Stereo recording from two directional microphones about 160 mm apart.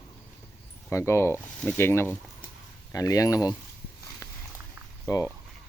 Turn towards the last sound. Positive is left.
turn(degrees=20)  # may be behind; listen again after turning